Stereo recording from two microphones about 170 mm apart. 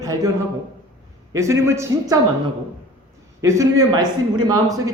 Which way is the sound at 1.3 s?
15° right (ahead or behind).